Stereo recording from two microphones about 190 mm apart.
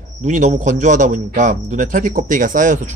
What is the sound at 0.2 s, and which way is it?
A man's voice, 40° right (ahead or behind).